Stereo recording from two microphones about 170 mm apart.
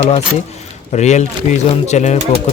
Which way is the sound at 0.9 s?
45° left (ahead or behind).